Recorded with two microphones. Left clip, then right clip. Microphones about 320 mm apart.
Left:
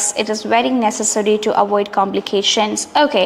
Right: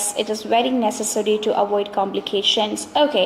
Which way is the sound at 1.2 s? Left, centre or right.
Left.